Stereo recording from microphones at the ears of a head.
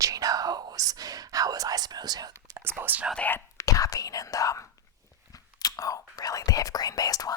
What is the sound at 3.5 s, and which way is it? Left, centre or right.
Whispering, left.